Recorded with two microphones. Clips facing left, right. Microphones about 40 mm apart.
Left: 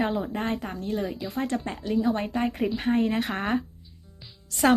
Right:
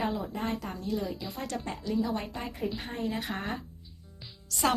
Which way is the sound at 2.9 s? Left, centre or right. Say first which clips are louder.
Left 9 dB; left.